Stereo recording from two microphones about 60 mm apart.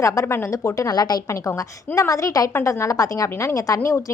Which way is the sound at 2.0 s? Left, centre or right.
Left.